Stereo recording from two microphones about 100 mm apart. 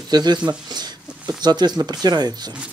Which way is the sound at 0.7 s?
45° right (ahead or behind).